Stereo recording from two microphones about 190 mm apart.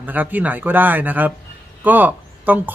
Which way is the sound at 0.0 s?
10° right (ahead or behind).